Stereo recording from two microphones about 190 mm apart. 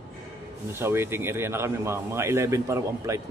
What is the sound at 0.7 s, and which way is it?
A man's voice, 15° right (ahead or behind).